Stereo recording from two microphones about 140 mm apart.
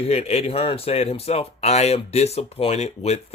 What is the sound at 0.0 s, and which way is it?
Speech, 45° left (ahead or behind).